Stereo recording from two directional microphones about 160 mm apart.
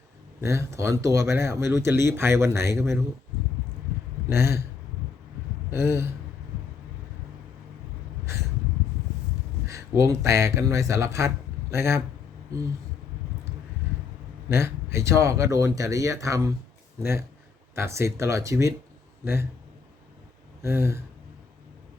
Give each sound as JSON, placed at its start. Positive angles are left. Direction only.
{"t": 0.4, "sound": "speech", "side_deg": -15}
{"t": 4.3, "sound": "speech", "side_deg": -15}
{"t": 5.7, "sound": "speech", "side_deg": -15}
{"t": 9.6, "sound": "speech", "side_deg": -20}
{"t": 14.9, "sound": "speech", "side_deg": -20}
{"t": 17.7, "sound": "speech", "side_deg": -15}
{"t": 20.6, "sound": "speech", "side_deg": -15}